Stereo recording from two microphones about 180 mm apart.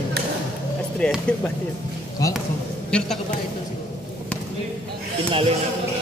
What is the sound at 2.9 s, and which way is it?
Speech, 5° left (ahead or behind).